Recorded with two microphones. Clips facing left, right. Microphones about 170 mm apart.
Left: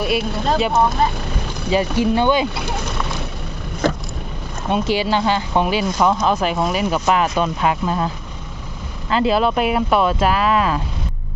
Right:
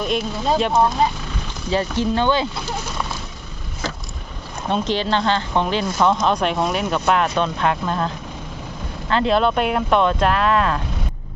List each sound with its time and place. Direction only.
0.0 s speech: 5° left (ahead or behind)
1.7 s speech: 15° left (ahead or behind)
3.8 s vehicle: 55° left (ahead or behind)
4.7 s speech: 10° left (ahead or behind)